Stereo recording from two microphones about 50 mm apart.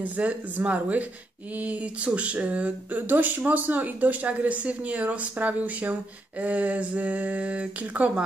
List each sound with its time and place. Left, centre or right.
0.0 s speech: right
2.1 s speech: right